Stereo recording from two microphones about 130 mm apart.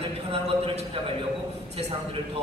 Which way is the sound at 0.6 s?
45° right (ahead or behind).